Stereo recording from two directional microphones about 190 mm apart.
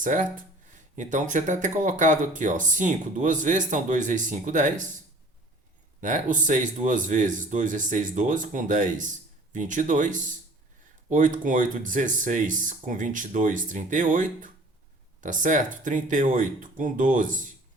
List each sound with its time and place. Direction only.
0.0 s speech: 40° right (ahead or behind)
6.0 s speech: 40° right (ahead or behind)